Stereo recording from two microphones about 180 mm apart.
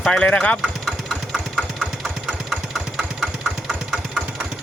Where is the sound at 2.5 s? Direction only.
5° right (ahead or behind).